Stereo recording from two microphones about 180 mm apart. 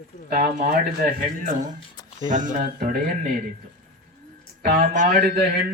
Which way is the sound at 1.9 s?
20° left (ahead or behind).